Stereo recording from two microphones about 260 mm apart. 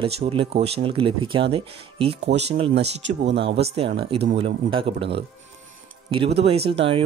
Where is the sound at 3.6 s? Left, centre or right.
Right.